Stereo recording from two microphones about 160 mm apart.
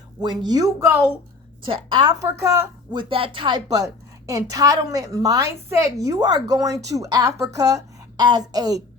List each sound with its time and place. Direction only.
0.2 s a woman's voice: 25° right (ahead or behind)
1.6 s a woman's voice: 30° right (ahead or behind)
2.2 s a woman's voice: 15° right (ahead or behind)
2.9 s a woman's voice: 30° right (ahead or behind)